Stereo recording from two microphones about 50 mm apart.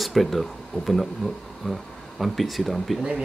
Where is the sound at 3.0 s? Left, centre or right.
Centre.